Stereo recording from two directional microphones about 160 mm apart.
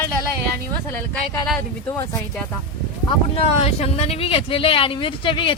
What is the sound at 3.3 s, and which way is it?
Speech, 40° left (ahead or behind).